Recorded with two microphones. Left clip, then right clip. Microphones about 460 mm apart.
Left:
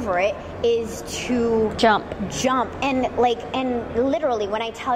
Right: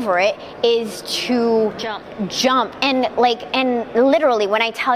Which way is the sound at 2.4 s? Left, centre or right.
Right.